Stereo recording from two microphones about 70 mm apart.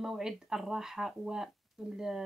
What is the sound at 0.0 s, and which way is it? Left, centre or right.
A woman's voice, centre.